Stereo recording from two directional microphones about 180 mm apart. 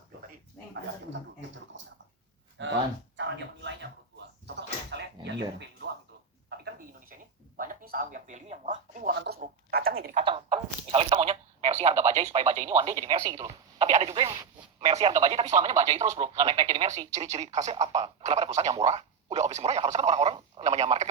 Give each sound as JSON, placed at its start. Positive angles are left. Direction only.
{"t": 1.7, "sound": "speech", "side_deg": -90}
{"t": 2.6, "sound": "speech", "side_deg": -80}
{"t": 3.2, "sound": "music", "side_deg": -85}
{"t": 4.4, "sound": "door", "side_deg": -70}
{"t": 5.2, "sound": "a sound", "side_deg": -75}
{"t": 6.7, "sound": "a sound", "side_deg": -50}
{"t": 9.0, "sound": "speech", "side_deg": -60}
{"t": 9.4, "sound": "a sound", "side_deg": -55}
{"t": 10.2, "sound": "telephone", "side_deg": -30}
{"t": 12.6, "sound": "speech", "side_deg": -35}
{"t": 13.1, "sound": "speech", "side_deg": -20}
{"t": 13.7, "sound": "speech", "side_deg": -35}